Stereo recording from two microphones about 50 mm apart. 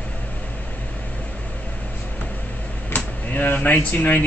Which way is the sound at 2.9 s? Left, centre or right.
Left.